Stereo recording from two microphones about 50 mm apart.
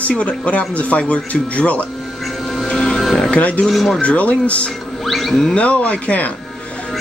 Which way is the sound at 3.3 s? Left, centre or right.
Left.